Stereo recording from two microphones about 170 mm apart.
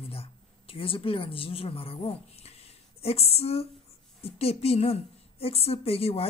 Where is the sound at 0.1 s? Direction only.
35° left (ahead or behind).